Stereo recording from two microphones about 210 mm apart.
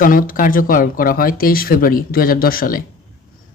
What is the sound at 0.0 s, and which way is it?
Speech, 40° left (ahead or behind).